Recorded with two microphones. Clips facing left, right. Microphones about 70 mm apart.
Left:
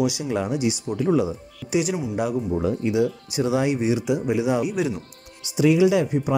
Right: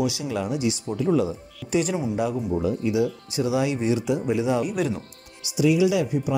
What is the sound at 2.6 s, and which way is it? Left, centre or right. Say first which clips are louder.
Speech: left 1 dB; left.